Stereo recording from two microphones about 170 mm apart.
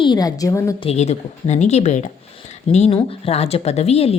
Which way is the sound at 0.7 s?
40° left (ahead or behind).